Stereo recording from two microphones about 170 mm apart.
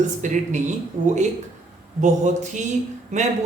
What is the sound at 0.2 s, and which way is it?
A man's voice, 45° right (ahead or behind).